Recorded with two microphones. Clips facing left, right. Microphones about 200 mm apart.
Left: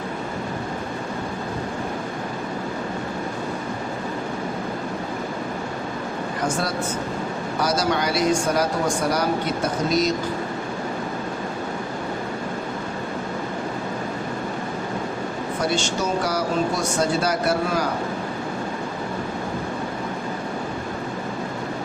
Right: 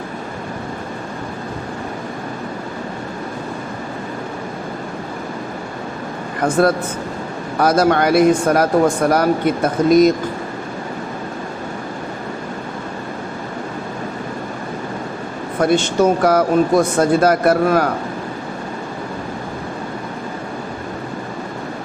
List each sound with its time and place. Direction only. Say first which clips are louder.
6.4 s speech: right 11 dB; 55° right (ahead or behind)
15.6 s speech: right 10 dB; 55° right (ahead or behind)